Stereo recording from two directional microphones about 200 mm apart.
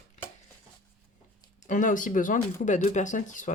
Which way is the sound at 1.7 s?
40° left (ahead or behind).